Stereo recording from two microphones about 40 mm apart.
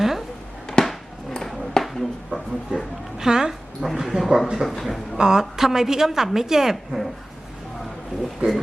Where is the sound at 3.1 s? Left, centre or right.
Centre.